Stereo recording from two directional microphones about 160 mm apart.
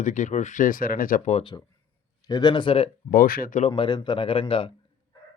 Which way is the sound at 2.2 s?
25° left (ahead or behind).